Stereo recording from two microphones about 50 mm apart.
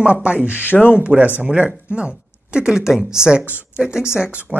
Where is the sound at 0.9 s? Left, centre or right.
Right.